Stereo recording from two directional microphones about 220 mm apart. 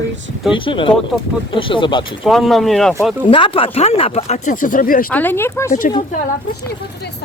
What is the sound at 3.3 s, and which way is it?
Speech, 25° left (ahead or behind).